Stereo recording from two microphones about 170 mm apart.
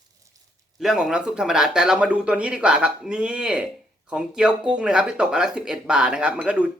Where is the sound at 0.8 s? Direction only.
Centre (ahead or behind).